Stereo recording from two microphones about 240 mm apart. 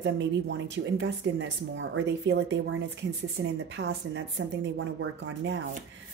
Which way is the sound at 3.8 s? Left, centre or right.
Right.